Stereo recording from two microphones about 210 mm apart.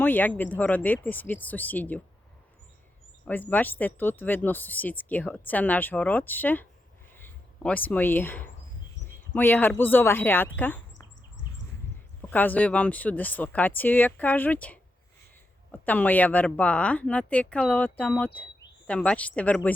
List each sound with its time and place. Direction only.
0.0 s speech: 10° left (ahead or behind)
3.2 s speech: 10° left (ahead or behind)
12.2 s speech: 10° left (ahead or behind)